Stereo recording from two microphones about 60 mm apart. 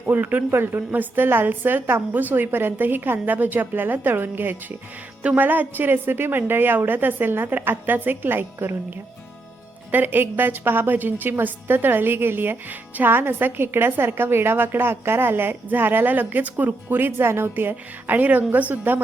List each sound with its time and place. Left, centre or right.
0.0 s a woman's voice: right
9.9 s a woman's voice: right